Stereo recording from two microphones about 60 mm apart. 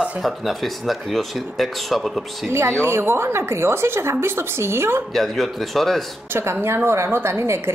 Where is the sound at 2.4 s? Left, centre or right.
Right.